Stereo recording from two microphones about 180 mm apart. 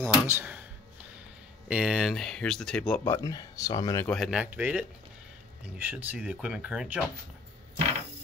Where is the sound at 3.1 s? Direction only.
20° left (ahead or behind).